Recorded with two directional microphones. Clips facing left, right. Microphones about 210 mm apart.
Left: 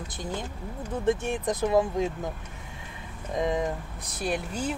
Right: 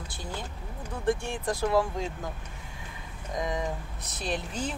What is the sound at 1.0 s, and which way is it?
Speech, 20° left (ahead or behind).